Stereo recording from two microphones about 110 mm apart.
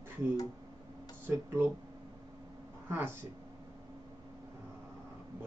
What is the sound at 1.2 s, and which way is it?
Speech, 25° right (ahead or behind).